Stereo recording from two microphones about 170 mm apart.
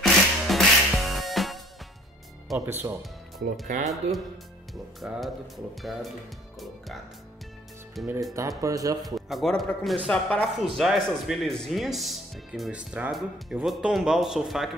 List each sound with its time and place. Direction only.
0.0 s music: centre (ahead or behind)
2.6 s speech: 15° right (ahead or behind)
3.0 s speech: centre (ahead or behind)
3.6 s speech: 45° right (ahead or behind)
5.0 s speech: centre (ahead or behind)
8.0 s speech: centre (ahead or behind)
8.3 s speech: 20° right (ahead or behind)
9.0 s speech: centre (ahead or behind)